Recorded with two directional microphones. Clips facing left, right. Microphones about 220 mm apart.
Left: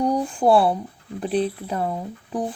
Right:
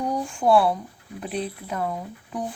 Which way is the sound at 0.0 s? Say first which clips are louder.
Left 4 dB; 35° left (ahead or behind).